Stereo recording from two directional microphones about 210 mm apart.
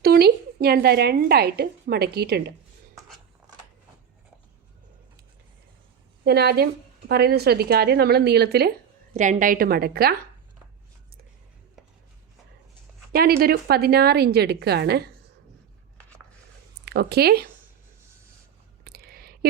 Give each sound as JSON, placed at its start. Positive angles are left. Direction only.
{"t": 0.0, "sound": "speech", "side_deg": -50}
{"t": 6.2, "sound": "a woman's voice", "side_deg": -50}
{"t": 9.1, "sound": "a woman's voice", "side_deg": -35}
{"t": 13.1, "sound": "a woman's voice", "side_deg": -45}
{"t": 16.8, "sound": "speech", "side_deg": -50}
{"t": 18.9, "sound": "a sound", "side_deg": -45}